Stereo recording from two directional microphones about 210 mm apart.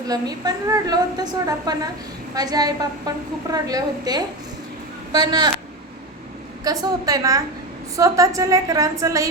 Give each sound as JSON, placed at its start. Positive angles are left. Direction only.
{"t": 0.1, "sound": "a woman's voice", "side_deg": -20}
{"t": 6.7, "sound": "a woman's voice", "side_deg": -15}